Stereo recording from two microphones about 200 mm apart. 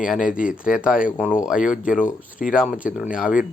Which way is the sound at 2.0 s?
40° left (ahead or behind).